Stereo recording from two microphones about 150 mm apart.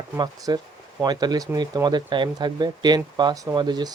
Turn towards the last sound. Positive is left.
turn(degrees=-30)  # may be behind; listen again after turning